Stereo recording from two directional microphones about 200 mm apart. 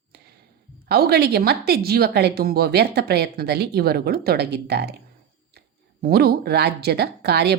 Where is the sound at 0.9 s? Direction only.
55° right (ahead or behind).